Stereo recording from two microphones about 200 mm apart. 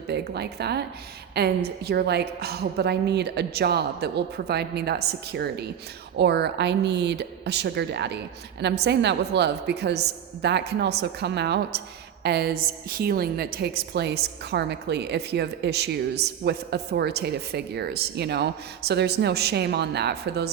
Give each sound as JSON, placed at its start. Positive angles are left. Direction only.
{"t": 0.1, "sound": "a woman's voice", "side_deg": -55}